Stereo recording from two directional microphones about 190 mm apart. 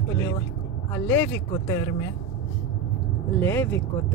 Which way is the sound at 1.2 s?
15° left (ahead or behind).